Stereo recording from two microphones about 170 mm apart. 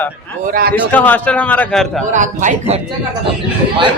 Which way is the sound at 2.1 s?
45° right (ahead or behind).